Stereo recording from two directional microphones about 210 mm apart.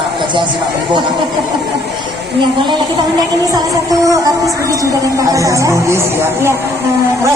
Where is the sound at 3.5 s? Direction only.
15° right (ahead or behind).